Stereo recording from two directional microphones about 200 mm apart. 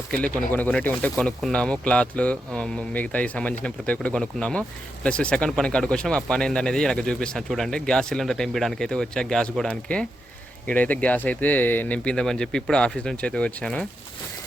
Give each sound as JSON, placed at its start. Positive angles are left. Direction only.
{"t": 0.3, "sound": "speech", "side_deg": 5}